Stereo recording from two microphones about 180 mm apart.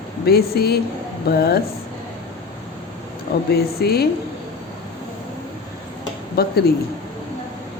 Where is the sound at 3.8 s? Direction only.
60° left (ahead or behind).